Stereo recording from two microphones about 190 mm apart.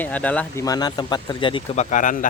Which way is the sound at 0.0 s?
5° left (ahead or behind).